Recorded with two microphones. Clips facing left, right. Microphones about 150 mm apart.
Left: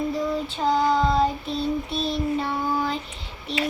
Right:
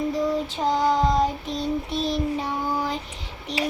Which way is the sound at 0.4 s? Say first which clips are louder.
Even; 15° right (ahead or behind).